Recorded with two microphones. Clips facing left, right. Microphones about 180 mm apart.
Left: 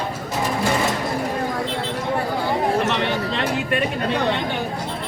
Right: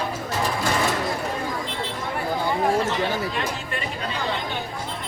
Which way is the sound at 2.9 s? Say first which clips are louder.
Left 2 dB; 70° left (ahead or behind).